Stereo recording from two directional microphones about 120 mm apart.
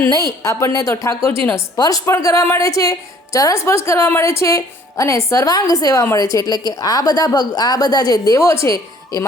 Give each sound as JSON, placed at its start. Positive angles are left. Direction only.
{"t": 0.4, "sound": "a woman's voice", "side_deg": 25}